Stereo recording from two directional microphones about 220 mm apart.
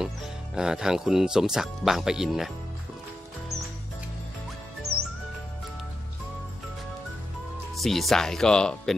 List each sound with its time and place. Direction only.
0.0 s speech: 5° right (ahead or behind)
7.7 s speech: centre (ahead or behind)